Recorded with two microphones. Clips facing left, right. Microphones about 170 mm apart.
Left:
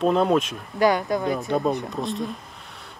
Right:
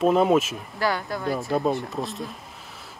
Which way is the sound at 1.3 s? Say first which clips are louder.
Right 4 dB; centre (ahead or behind).